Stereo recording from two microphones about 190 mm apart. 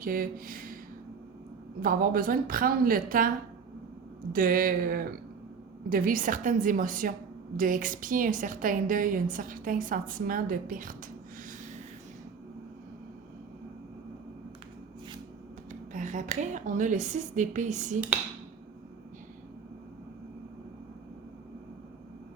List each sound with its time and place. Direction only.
0.0 s speech: 50° right (ahead or behind)
1.8 s a woman's voice: 50° right (ahead or behind)
15.9 s a woman's voice: 40° right (ahead or behind)